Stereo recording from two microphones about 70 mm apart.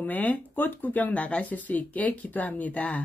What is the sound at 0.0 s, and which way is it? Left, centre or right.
A woman's voice, left.